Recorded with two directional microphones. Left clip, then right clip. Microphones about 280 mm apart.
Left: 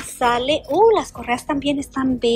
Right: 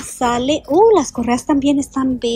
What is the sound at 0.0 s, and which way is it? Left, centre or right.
A woman's voice, centre.